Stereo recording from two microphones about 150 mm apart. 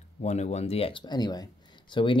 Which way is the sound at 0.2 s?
50° left (ahead or behind).